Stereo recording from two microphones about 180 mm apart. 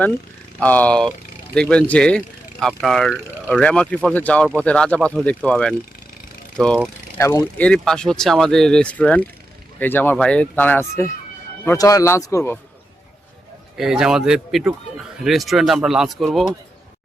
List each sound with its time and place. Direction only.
0.6 s speech: 10° left (ahead or behind)
7.2 s speech: 15° left (ahead or behind)
13.7 s speech: 5° right (ahead or behind)